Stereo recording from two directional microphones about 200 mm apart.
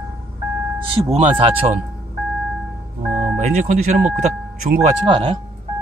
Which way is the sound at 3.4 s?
40° right (ahead or behind).